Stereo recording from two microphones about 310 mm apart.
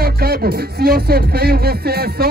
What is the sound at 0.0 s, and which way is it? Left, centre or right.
Speech, right.